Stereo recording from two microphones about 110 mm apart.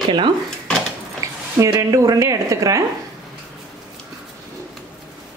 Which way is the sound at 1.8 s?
30° right (ahead or behind).